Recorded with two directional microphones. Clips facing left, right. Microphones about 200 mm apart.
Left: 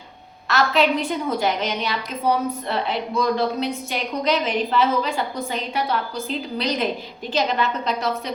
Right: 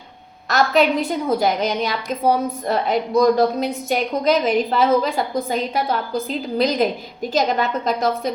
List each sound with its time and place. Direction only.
0.4 s a woman's voice: 40° right (ahead or behind)